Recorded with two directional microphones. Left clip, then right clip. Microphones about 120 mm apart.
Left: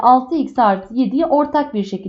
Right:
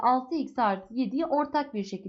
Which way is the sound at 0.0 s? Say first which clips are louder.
Left 13 dB; 20° right (ahead or behind).